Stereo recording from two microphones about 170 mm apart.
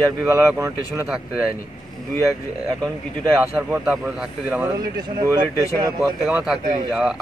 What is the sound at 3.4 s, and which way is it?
Speech, 10° right (ahead or behind).